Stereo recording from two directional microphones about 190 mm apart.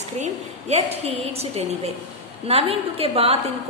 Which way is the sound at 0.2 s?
35° right (ahead or behind).